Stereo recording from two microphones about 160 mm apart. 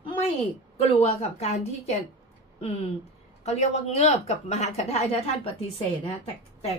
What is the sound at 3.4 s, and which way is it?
A woman's voice, 45° left (ahead or behind).